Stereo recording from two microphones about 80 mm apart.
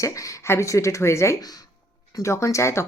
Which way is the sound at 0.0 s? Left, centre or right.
Left.